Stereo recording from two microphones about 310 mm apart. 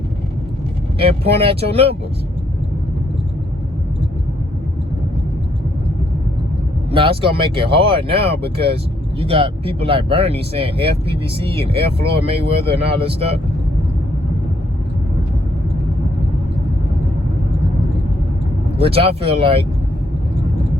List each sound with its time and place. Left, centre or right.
0.9 s speech: centre
6.9 s speech: centre
8.1 s speech: right
9.1 s speech: centre
18.8 s speech: centre